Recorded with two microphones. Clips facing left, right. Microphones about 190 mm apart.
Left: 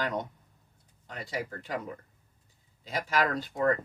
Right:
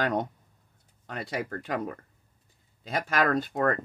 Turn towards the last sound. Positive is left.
turn(degrees=-70)  # may be behind; listen again after turning